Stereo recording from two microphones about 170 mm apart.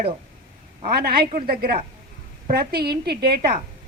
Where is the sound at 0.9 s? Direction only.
65° right (ahead or behind).